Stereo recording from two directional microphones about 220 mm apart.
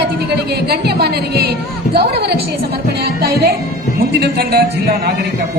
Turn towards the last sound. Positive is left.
turn(degrees=-45)  # may be behind; listen again after turning